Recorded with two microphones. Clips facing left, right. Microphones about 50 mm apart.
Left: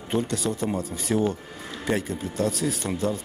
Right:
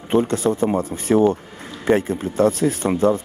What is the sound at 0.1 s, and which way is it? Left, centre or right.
Speech, right.